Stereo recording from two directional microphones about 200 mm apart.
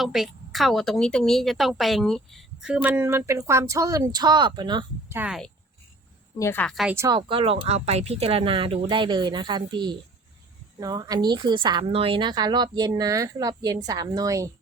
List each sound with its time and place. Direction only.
0.0 s speech: centre (ahead or behind); by 5.1 s 25° right (ahead or behind)
5.1 s a woman's voice: 5° right (ahead or behind)
6.4 s a woman's voice: 10° left (ahead or behind)
6.9 s speech: 15° right (ahead or behind)